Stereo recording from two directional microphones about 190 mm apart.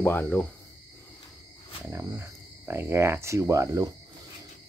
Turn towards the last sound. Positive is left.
turn(degrees=-15)  # may be behind; listen again after turning